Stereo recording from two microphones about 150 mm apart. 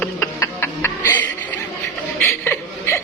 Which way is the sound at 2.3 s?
15° left (ahead or behind).